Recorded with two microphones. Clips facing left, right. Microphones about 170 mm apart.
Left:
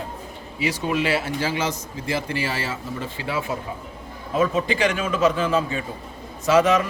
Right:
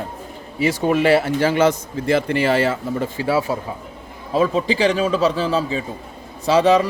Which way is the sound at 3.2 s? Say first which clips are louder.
Right 6 dB; 40° right (ahead or behind).